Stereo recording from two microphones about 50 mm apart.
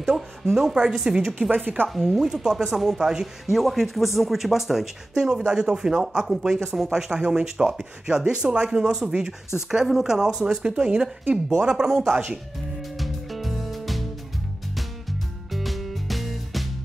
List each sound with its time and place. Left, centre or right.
0.0 s speech: centre
1.9 s speech: centre
2.2 s speech: centre
3.5 s speech: centre
7.2 s speech: centre
12.9 s music: centre